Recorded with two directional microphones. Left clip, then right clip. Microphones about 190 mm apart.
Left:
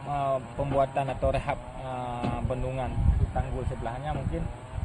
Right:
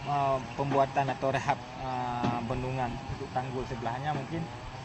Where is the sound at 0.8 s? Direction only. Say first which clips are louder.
Left 2 dB; 40° left (ahead or behind).